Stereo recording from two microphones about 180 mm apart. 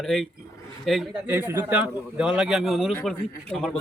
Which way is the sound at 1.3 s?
10° right (ahead or behind).